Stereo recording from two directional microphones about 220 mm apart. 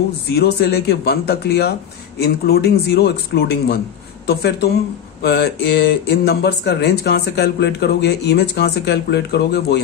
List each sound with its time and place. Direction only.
0.4 s speech: 50° left (ahead or behind)